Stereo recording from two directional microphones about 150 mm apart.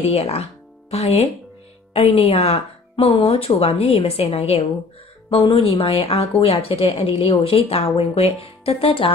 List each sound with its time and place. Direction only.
0.1 s speech: 40° left (ahead or behind)